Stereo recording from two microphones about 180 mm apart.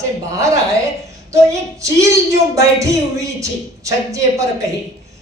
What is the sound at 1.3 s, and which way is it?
A woman's voice, 15° right (ahead or behind).